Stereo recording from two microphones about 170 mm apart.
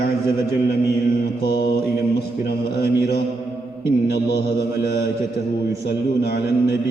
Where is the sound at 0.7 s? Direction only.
70° left (ahead or behind).